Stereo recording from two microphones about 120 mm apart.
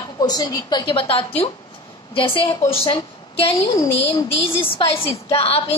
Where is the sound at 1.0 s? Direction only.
50° left (ahead or behind).